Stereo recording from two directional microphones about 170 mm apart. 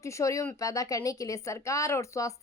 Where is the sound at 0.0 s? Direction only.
20° left (ahead or behind).